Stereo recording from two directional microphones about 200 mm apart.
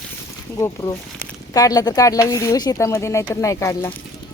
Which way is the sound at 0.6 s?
15° left (ahead or behind).